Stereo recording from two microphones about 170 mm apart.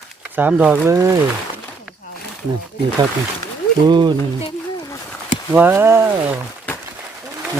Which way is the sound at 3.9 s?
25° right (ahead or behind).